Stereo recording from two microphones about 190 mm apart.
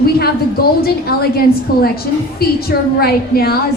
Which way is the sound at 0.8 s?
55° left (ahead or behind).